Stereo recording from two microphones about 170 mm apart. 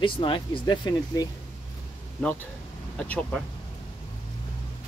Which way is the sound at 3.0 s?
5° left (ahead or behind).